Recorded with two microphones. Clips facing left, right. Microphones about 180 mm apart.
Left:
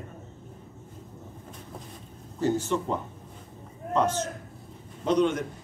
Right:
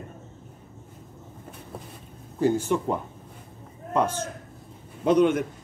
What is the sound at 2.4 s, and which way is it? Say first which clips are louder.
Speech: right 3 dB; 10° right (ahead or behind).